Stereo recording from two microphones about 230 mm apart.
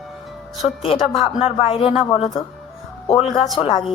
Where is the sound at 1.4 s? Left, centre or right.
Left.